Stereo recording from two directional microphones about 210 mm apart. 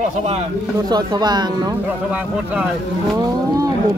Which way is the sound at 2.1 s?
5° right (ahead or behind).